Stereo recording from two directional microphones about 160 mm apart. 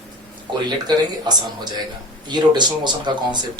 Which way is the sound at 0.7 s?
25° right (ahead or behind).